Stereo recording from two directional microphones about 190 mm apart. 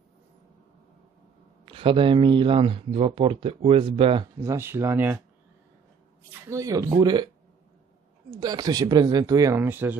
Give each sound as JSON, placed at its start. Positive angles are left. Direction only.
{"t": 1.7, "sound": "speech", "side_deg": -25}
{"t": 4.4, "sound": "speech", "side_deg": -15}
{"t": 6.5, "sound": "speech", "side_deg": -15}
{"t": 8.4, "sound": "speech", "side_deg": -20}